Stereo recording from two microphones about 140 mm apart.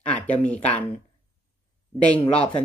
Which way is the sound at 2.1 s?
40° left (ahead or behind).